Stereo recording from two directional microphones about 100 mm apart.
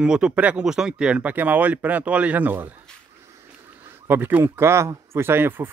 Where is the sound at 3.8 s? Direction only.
25° right (ahead or behind).